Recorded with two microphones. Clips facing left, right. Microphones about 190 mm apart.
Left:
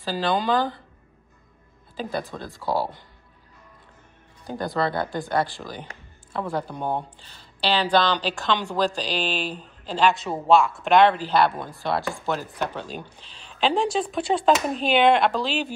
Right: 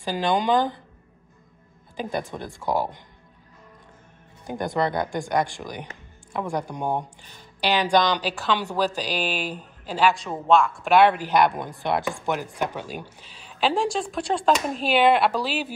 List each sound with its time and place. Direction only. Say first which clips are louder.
0.0 s speech: right 1 dB; 15° right (ahead or behind)
2.0 s speech: right 1 dB; 20° right (ahead or behind)
4.6 s speech: right 1 dB; 20° right (ahead or behind)
10.2 s speech: left 1 dB; 5° left (ahead or behind)
10.9 s speech: even; 10° right (ahead or behind)